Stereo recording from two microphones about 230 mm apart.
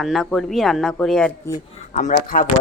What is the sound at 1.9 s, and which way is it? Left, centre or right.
Speech, left.